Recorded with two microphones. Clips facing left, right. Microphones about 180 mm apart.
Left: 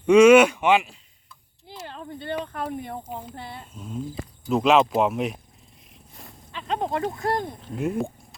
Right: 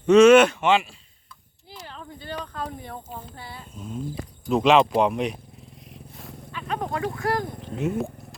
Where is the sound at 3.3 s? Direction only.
55° left (ahead or behind).